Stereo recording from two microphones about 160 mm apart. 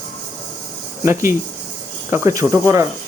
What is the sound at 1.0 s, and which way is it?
Speech, 15° right (ahead or behind).